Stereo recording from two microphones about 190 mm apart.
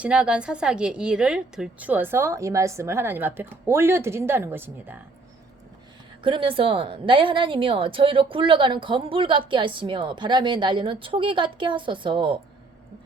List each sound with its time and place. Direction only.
0.0 s a woman's voice: 5° right (ahead or behind)
6.2 s a woman's voice: 25° right (ahead or behind)